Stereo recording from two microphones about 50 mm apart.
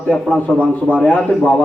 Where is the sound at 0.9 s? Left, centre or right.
Left.